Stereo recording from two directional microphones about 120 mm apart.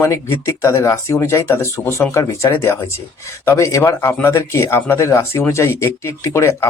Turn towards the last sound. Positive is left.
turn(degrees=25)  # may be behind; listen again after turning